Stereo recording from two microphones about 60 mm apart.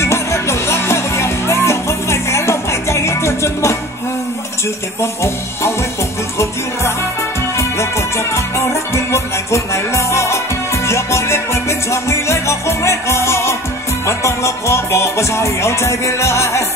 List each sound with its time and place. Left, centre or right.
0.0 s music: left
5.0 s music: left
8.4 s music: left